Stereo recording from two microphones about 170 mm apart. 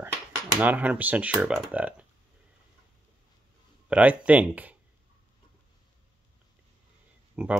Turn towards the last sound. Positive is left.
turn(degrees=-5)  # may be behind; listen again after turning